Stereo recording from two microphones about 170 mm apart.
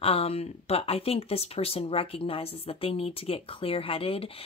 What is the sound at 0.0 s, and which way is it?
A woman's voice, 35° left (ahead or behind).